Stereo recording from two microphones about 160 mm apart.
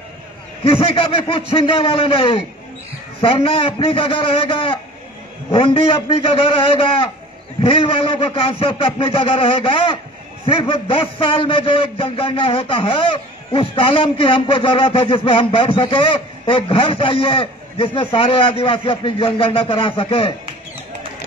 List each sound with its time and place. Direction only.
0.7 s a man's voice: 35° left (ahead or behind)